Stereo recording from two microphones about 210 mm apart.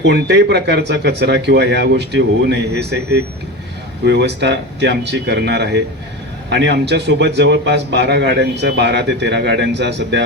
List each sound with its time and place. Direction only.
0.0 s a man's voice: 55° right (ahead or behind)